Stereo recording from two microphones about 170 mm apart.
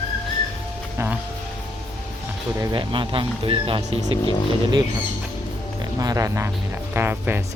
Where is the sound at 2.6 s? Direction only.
25° right (ahead or behind).